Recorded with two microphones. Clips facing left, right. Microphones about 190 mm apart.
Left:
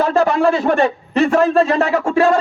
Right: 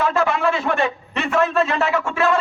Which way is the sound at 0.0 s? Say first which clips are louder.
Left 5 dB; 40° left (ahead or behind).